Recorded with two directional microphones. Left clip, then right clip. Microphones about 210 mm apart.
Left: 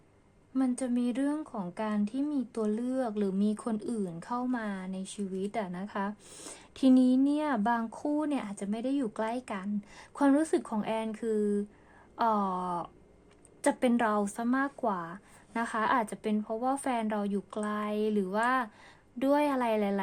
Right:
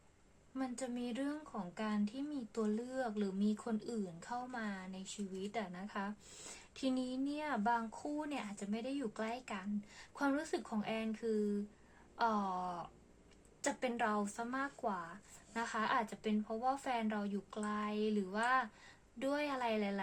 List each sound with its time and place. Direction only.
0.5 s speech: 40° left (ahead or behind)